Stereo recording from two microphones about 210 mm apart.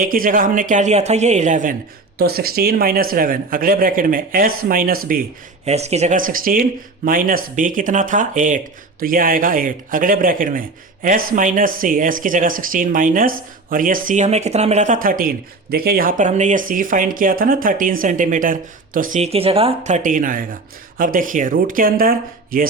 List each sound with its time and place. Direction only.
0.0 s speech: 40° right (ahead or behind)
2.1 s speech: 45° right (ahead or behind)
5.6 s speech: 30° right (ahead or behind)